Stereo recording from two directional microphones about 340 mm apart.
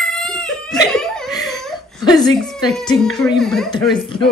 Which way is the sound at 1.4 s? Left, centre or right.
Centre.